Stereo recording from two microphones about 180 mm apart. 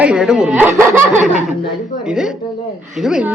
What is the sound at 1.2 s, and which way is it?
A woman's voice, centre (ahead or behind).